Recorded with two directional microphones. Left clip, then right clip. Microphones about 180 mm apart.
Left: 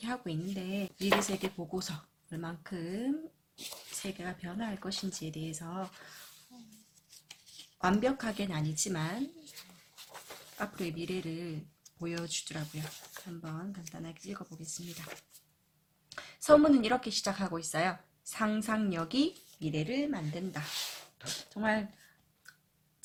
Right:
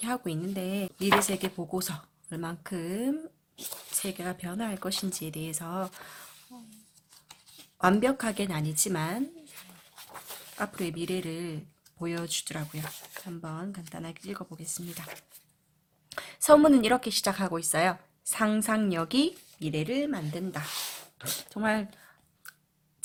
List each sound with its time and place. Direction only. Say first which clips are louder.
0.0 s a woman's voice: right 5 dB; 40° right (ahead or behind)
7.8 s a woman's voice: right 5 dB; 45° right (ahead or behind)
10.5 s a woman's voice: right 5 dB; 35° right (ahead or behind)